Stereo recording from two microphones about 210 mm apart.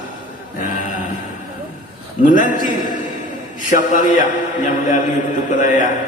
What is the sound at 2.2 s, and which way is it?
A man's voice, 40° left (ahead or behind).